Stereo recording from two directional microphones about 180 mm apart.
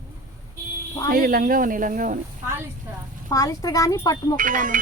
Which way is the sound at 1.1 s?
50° right (ahead or behind).